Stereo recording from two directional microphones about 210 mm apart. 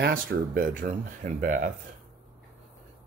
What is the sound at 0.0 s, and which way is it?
Speech, 45° right (ahead or behind).